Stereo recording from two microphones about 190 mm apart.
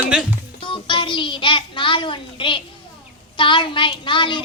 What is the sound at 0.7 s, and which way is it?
A child's voice, 25° left (ahead or behind).